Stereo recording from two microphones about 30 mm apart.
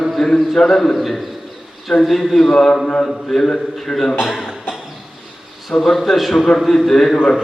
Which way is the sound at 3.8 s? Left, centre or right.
Centre.